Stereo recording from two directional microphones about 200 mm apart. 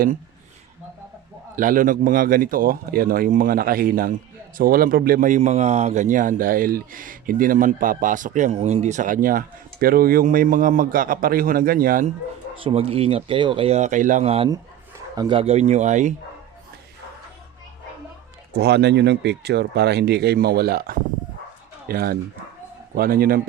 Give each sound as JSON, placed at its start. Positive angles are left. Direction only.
{"t": 1.5, "sound": "a man's voice", "side_deg": -40}
{"t": 12.5, "sound": "speech", "side_deg": -25}
{"t": 14.5, "sound": "speech", "side_deg": -20}
{"t": 18.5, "sound": "a man's voice", "side_deg": -55}